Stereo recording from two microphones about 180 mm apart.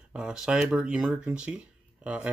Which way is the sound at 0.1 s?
5° right (ahead or behind).